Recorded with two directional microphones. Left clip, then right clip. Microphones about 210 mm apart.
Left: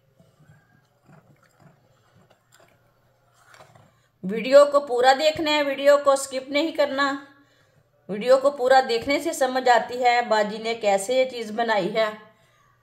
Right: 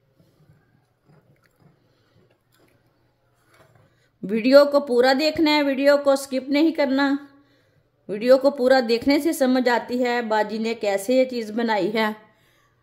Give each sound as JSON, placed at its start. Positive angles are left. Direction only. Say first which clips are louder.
{"t": 4.2, "sound": "a woman's voice", "louder": "right 1 dB", "side_deg": -40}